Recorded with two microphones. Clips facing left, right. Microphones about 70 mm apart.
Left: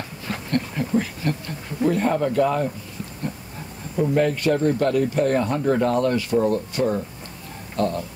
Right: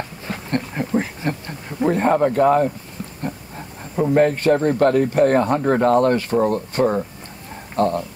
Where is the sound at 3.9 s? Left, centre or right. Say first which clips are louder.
Right 4 dB; right.